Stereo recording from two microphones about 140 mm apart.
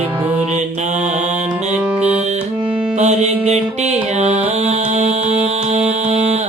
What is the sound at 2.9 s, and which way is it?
Music, 55° right (ahead or behind).